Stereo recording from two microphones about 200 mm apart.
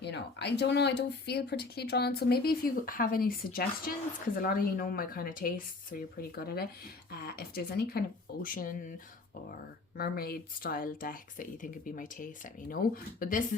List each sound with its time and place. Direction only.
0.0 s speech: 60° left (ahead or behind)
10.0 s speech: 50° left (ahead or behind)